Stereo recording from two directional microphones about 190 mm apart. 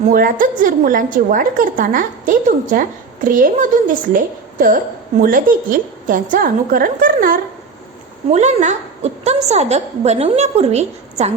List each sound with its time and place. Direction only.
0.1 s a woman's voice: 45° right (ahead or behind)
8.3 s a woman's voice: 35° right (ahead or behind)